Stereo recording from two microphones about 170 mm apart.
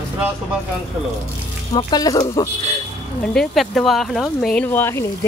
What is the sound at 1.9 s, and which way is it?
Speech, 20° left (ahead or behind).